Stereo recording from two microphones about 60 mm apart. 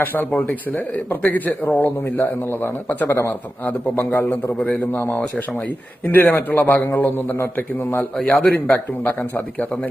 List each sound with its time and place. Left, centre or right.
0.0 s a man's voice: left
3.1 s speech: left
3.7 s a man's voice: left
6.2 s a man's voice: left
8.3 s speech: left